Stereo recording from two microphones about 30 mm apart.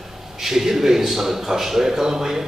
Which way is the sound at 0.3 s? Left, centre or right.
Centre.